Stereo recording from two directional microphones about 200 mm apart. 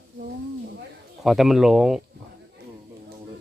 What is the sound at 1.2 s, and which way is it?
Speech, centre (ahead or behind).